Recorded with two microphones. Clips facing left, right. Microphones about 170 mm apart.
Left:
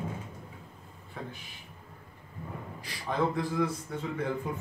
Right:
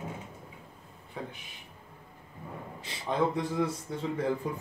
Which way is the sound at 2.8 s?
25° right (ahead or behind).